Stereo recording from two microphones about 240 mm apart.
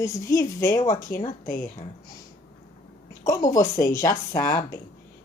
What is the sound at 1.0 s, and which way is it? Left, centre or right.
Speech, left.